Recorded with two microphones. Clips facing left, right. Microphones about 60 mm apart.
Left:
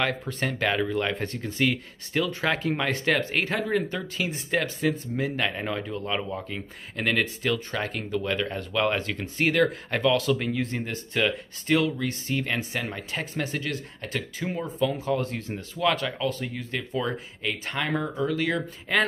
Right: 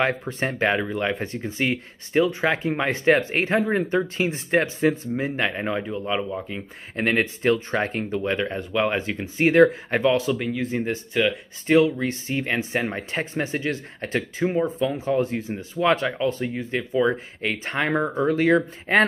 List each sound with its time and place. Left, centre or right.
0.0 s speech: right
7.0 s speech: right
10.3 s speech: centre
11.6 s speech: right
17.4 s speech: right